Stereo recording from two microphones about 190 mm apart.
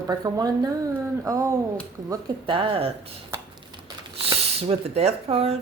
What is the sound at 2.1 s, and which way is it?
Speech, 25° right (ahead or behind).